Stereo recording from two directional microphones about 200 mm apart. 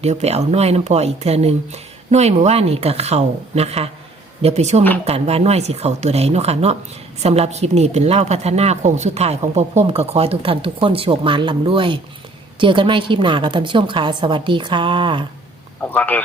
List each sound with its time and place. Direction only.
0.0 s a woman's voice: 35° right (ahead or behind)
15.8 s speech: 10° left (ahead or behind)